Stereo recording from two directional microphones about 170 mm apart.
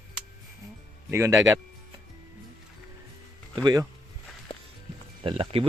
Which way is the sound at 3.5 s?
25° right (ahead or behind).